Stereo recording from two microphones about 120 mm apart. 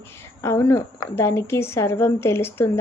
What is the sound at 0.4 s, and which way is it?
Speech, 20° left (ahead or behind).